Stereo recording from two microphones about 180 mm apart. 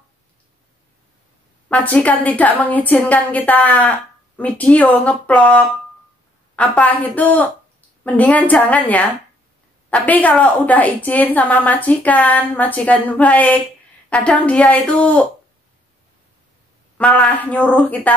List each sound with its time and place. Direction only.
1.7 s a woman's voice: 10° left (ahead or behind)
16.9 s a woman's voice: 5° left (ahead or behind)